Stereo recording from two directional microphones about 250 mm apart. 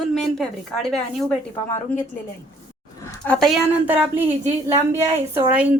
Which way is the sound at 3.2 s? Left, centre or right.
Centre.